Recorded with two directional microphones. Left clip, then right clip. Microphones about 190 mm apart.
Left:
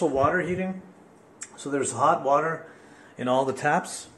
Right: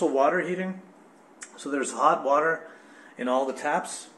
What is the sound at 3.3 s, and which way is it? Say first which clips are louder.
Speech: left 2 dB; 30° left (ahead or behind).